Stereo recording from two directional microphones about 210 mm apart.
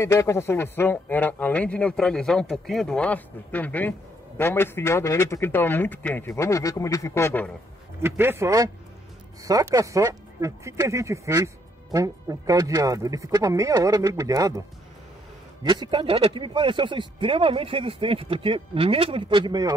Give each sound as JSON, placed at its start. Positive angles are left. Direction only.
{"t": 0.0, "sound": "speech", "side_deg": 15}
{"t": 8.0, "sound": "speech", "side_deg": -10}
{"t": 15.6, "sound": "speech", "side_deg": -20}